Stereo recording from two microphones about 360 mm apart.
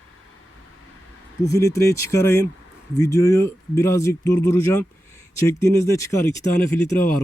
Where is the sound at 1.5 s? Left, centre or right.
Centre.